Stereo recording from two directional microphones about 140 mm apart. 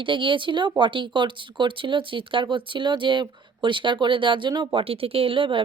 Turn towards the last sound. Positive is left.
turn(degrees=-40)  # may be behind; listen again after turning